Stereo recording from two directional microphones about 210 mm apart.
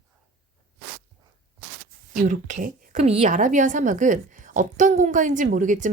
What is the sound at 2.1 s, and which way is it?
A woman's voice, 35° right (ahead or behind).